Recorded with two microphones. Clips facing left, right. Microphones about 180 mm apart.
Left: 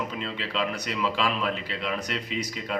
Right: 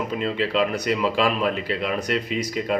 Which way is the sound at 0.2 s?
50° right (ahead or behind).